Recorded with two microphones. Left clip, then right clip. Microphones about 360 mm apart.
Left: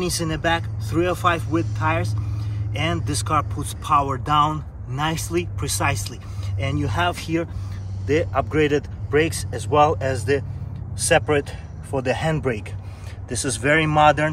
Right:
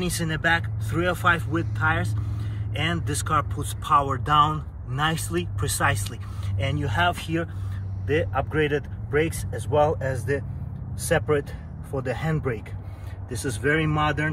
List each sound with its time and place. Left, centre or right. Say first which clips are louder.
0.0 s speech: left 2 dB; centre